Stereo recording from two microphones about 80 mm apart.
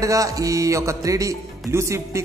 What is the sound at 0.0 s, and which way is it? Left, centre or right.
Speech, right.